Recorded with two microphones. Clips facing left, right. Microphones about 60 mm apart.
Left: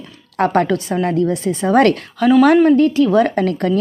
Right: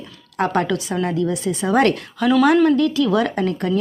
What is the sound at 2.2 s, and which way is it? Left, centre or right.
Speech, left.